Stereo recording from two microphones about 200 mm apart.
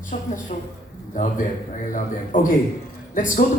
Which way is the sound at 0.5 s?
40° left (ahead or behind).